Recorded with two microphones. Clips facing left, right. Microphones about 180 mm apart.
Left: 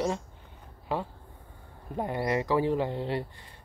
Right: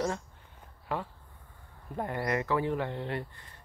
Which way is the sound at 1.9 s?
15° left (ahead or behind).